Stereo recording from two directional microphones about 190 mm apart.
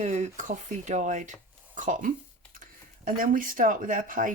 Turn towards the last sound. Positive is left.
turn(degrees=-45)  # may be behind; listen again after turning